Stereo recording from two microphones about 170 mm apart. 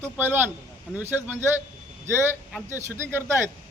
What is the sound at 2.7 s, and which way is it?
Speech, 15° right (ahead or behind).